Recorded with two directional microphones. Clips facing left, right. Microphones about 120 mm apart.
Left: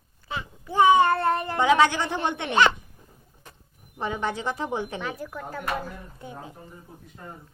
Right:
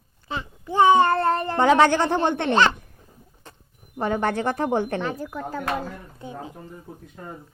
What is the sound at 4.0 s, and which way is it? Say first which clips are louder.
Speech: right 5 dB; 50° right (ahead or behind).